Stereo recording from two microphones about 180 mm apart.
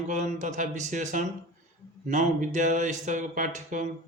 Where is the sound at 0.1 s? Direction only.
45° right (ahead or behind).